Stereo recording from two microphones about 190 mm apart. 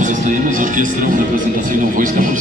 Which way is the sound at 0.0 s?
40° right (ahead or behind).